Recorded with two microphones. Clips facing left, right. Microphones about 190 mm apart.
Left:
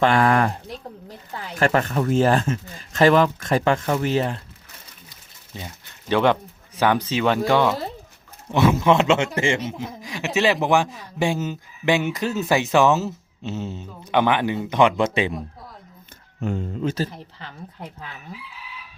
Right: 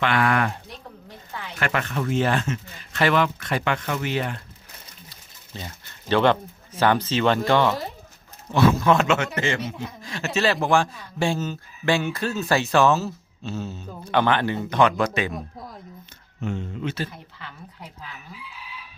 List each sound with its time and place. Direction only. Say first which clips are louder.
0.0 s speech: left 4 dB; 40° left (ahead or behind)
5.5 s speech: left 1 dB; 10° left (ahead or behind)
8.5 s a man's voice: left 1 dB; 20° left (ahead or behind)
9.6 s speech: left 2 dB; 15° left (ahead or behind)
16.4 s speech: left 3 dB; 40° left (ahead or behind)